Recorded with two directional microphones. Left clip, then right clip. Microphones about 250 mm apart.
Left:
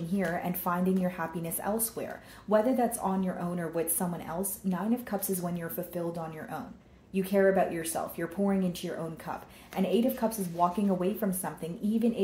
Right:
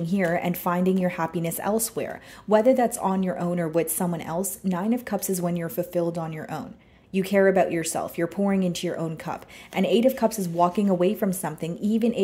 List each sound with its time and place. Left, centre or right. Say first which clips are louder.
0.1 s speech: right 7 dB; right